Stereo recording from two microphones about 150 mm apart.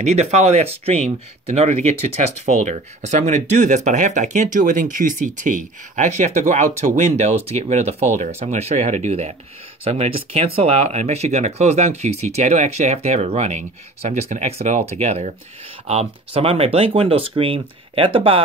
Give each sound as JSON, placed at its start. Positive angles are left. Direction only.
{"t": 0.0, "sound": "speech", "side_deg": -50}